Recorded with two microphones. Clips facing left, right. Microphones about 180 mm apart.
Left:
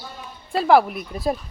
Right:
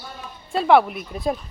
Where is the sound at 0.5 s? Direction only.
Centre (ahead or behind).